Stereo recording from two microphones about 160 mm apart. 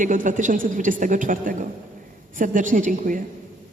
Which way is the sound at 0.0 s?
55° right (ahead or behind).